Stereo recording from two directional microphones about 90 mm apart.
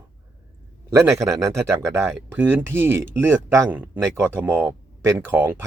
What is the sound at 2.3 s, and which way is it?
Speech, 20° right (ahead or behind).